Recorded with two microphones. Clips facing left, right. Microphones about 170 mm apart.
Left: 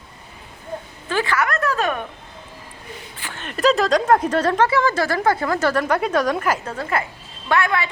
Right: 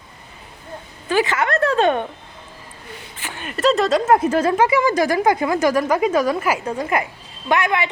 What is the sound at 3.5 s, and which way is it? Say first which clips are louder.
A woman's voice: even; centre (ahead or behind).